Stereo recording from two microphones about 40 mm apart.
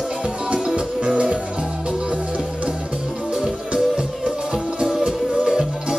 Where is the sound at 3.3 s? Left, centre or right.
Right.